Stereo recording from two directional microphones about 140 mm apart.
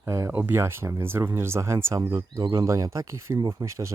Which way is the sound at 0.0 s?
20° right (ahead or behind).